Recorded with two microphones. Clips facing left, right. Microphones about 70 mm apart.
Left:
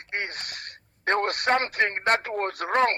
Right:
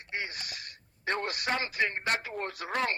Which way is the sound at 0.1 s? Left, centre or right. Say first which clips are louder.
Left 5 dB; left.